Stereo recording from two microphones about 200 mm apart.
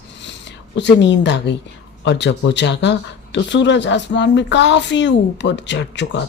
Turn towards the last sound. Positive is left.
turn(degrees=60)  # may be behind; listen again after turning